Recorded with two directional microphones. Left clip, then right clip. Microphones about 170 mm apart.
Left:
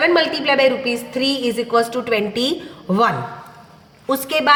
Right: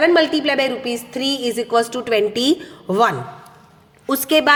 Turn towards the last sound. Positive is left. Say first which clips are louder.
# right 1 dB
turn(degrees=-40)  # may be behind; listen again after turning